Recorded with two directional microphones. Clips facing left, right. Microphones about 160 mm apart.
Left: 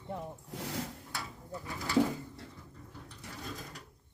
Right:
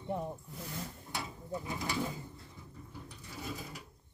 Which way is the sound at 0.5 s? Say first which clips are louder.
Left 5 dB; 85° left.